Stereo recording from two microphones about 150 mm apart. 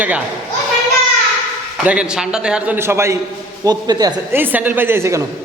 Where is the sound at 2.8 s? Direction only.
15° right (ahead or behind).